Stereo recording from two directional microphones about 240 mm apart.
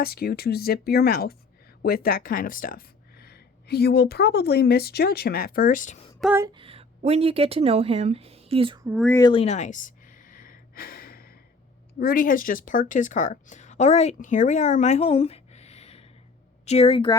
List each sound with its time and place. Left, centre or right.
0.0 s speech: left
6.1 s speech: centre
6.4 s speech: right
9.0 s gasp: centre; by 11.3 s left
11.9 s speech: left